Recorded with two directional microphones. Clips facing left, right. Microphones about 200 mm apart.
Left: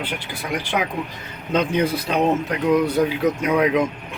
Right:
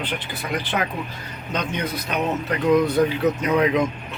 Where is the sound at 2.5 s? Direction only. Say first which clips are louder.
Right 4 dB; 10° left (ahead or behind).